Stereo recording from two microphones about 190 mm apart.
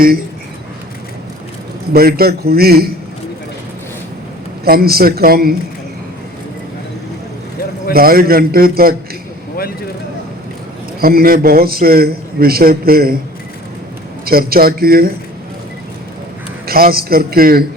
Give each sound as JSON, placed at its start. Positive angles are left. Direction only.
{"t": 1.9, "sound": "a man's voice", "side_deg": -55}
{"t": 4.6, "sound": "a man's voice", "side_deg": -55}
{"t": 7.9, "sound": "a man's voice", "side_deg": -50}
{"t": 11.0, "sound": "a man's voice", "side_deg": -50}
{"t": 14.3, "sound": "a man's voice", "side_deg": -50}
{"t": 16.6, "sound": "a man's voice", "side_deg": -50}